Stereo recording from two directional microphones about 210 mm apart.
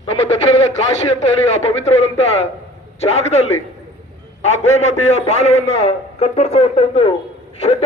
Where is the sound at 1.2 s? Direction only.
30° left (ahead or behind).